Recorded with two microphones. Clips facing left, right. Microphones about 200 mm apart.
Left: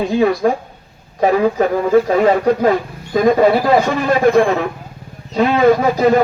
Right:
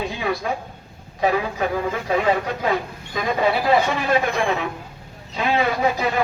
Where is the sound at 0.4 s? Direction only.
45° left (ahead or behind).